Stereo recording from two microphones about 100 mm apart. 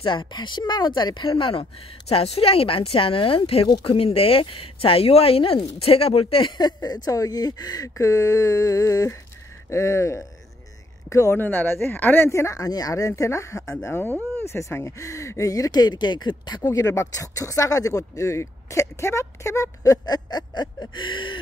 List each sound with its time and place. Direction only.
0.0 s speech: 55° left (ahead or behind)
1.4 s a woman's voice: 65° left (ahead or behind)
6.6 s speech: 45° left (ahead or behind)
16.6 s speech: 35° left (ahead or behind); by 21.4 s 55° left (ahead or behind)